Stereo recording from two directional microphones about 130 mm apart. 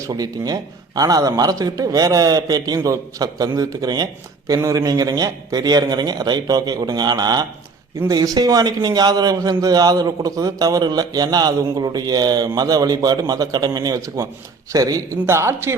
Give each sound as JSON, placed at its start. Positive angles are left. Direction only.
{"t": 0.0, "sound": "a man's voice", "side_deg": -30}